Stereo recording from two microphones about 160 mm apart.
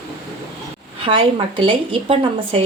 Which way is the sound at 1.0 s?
30° right (ahead or behind).